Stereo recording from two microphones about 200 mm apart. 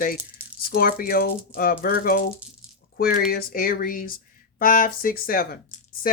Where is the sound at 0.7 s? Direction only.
50° left (ahead or behind).